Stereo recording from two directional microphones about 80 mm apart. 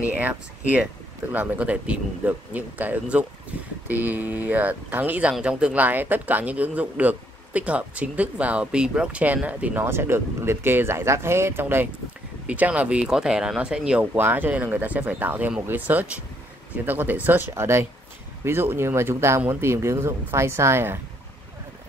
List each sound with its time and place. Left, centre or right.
0.1 s speech: centre
9.8 s speech: right; by 14.0 s centre
14.1 s speech: right